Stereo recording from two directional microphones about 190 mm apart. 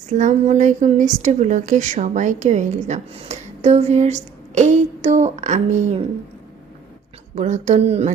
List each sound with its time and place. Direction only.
0.1 s a woman's voice: 40° right (ahead or behind)
7.3 s a woman's voice: 35° right (ahead or behind)